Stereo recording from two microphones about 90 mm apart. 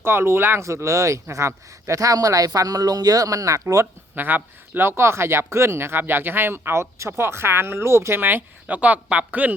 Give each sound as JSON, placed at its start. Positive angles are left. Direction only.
{"t": 0.0, "sound": "speech", "side_deg": -25}
{"t": 4.1, "sound": "speech", "side_deg": -20}